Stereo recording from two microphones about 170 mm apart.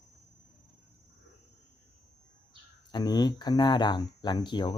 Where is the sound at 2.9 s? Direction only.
25° left (ahead or behind).